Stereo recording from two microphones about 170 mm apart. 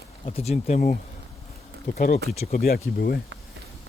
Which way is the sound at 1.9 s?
60° left (ahead or behind).